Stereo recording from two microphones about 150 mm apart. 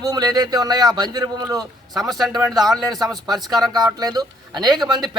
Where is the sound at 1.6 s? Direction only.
Centre (ahead or behind).